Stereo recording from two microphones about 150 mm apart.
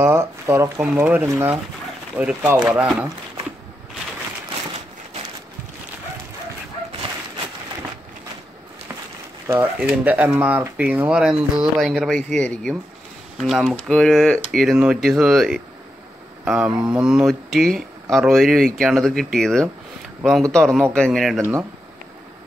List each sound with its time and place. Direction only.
0.0 s speech: 15° right (ahead or behind)
9.5 s speech: 10° right (ahead or behind)
21.4 s speech: 15° right (ahead or behind)